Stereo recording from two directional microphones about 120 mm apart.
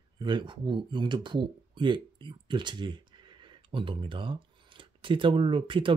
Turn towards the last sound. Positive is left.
turn(degrees=-45)  # may be behind; listen again after turning